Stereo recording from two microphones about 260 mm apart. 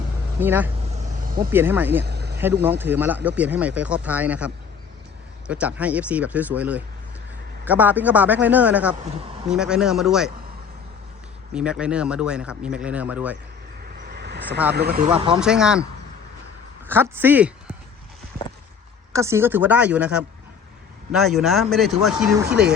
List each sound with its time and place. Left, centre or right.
0.3 s a woman's voice: centre
0.9 s vehicle: right
1.4 s a woman's voice: centre
2.0 s vehicle: right
2.6 s a woman's voice: centre
11.5 s speech: centre
14.1 s vehicle: right
14.7 s speech: right
15.4 s speech: centre
16.8 s a woman's voice: centre
19.1 s a woman's voice: centre